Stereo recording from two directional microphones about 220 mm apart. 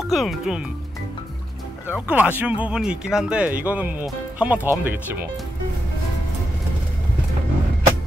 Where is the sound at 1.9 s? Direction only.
5° right (ahead or behind).